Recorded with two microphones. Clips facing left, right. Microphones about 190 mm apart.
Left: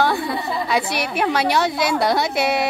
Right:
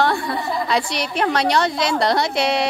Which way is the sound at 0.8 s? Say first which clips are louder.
Left 1 dB; 60° left (ahead or behind).